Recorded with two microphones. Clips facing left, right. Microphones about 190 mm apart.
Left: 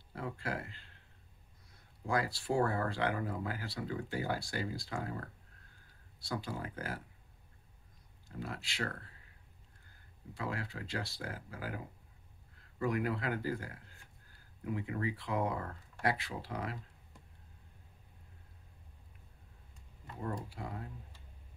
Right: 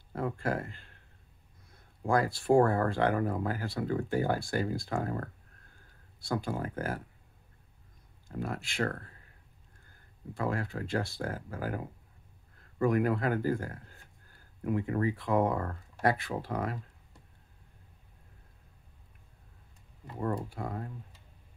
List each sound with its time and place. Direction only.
0.1 s speech: 50° right (ahead or behind)
2.0 s speech: 50° right (ahead or behind)
6.2 s speech: 50° right (ahead or behind)
8.3 s speech: 50° right (ahead or behind)
10.3 s speech: 50° right (ahead or behind)
20.4 s speech: 50° right (ahead or behind)